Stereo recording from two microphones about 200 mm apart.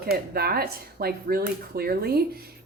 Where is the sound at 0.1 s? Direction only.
50° right (ahead or behind).